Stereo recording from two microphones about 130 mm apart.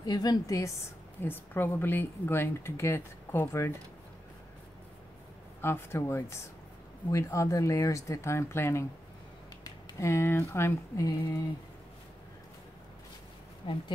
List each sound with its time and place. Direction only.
0.0 s a woman's voice: 30° left (ahead or behind)
1.2 s a woman's voice: 15° left (ahead or behind)
5.6 s speech: 20° left (ahead or behind)
9.9 s speech: 20° left (ahead or behind)
13.6 s speech: 40° left (ahead or behind)